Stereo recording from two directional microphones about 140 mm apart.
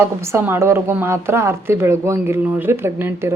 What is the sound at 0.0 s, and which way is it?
A woman's voice, 15° right (ahead or behind).